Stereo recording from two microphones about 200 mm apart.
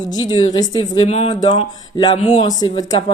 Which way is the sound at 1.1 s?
30° left (ahead or behind).